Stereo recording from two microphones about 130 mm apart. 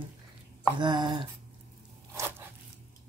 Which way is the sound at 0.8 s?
35° right (ahead or behind).